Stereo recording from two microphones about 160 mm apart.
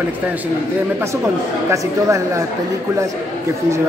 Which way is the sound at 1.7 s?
20° right (ahead or behind).